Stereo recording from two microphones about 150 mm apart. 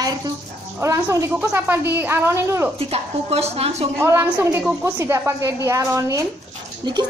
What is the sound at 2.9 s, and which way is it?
A woman's voice, 40° right (ahead or behind).